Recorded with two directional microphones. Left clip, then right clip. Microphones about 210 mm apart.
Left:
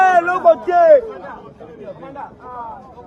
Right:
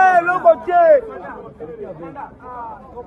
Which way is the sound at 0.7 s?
45° left (ahead or behind).